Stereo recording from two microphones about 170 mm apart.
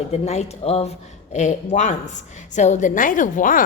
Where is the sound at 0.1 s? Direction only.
40° left (ahead or behind).